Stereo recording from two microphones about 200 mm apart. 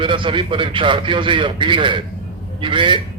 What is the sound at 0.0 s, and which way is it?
A man's voice, 25° right (ahead or behind).